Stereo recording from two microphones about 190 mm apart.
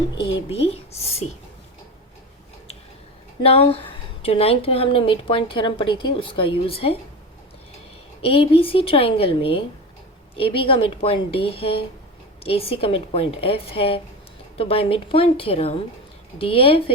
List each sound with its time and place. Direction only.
0.5 s speech: 30° left (ahead or behind)
3.4 s a woman's voice: 30° left (ahead or behind)
8.2 s a woman's voice: 30° left (ahead or behind)